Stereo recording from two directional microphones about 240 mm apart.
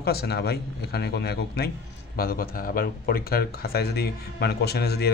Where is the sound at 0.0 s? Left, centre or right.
Left.